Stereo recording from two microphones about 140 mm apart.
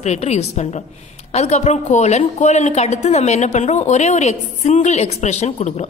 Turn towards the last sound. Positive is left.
turn(degrees=55)  # may be behind; listen again after turning